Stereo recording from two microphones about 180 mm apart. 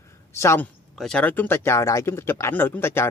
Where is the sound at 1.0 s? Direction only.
5° left (ahead or behind).